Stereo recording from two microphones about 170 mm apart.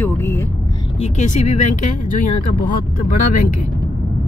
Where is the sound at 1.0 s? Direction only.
40° left (ahead or behind).